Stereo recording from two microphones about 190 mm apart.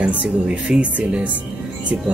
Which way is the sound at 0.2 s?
5° right (ahead or behind).